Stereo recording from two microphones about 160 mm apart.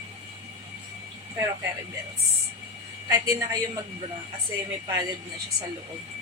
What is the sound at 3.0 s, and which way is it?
Speech, 20° right (ahead or behind).